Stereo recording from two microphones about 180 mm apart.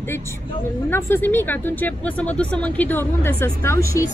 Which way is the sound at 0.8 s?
15° left (ahead or behind).